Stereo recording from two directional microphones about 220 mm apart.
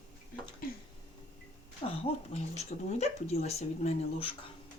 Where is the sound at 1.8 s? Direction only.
25° left (ahead or behind).